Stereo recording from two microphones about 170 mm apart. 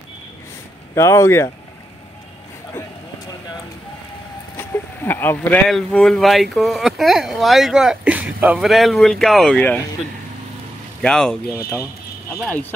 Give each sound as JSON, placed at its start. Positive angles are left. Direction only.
{"t": 0.9, "sound": "speech", "side_deg": 15}
{"t": 4.6, "sound": "vehicle", "side_deg": 15}
{"t": 5.7, "sound": "speech", "side_deg": 0}
{"t": 11.0, "sound": "speech", "side_deg": 5}